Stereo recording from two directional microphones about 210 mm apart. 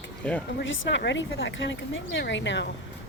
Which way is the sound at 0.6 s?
60° left (ahead or behind).